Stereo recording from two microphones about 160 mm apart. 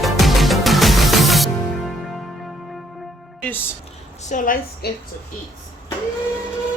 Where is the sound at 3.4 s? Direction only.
10° left (ahead or behind).